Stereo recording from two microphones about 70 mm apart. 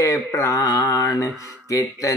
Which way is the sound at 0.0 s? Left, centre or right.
Left.